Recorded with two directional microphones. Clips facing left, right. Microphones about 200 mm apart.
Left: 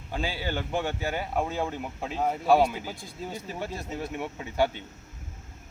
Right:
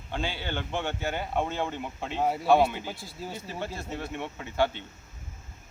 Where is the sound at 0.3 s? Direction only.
5° left (ahead or behind).